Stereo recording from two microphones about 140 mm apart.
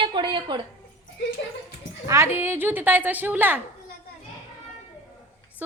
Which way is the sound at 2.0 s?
20° right (ahead or behind).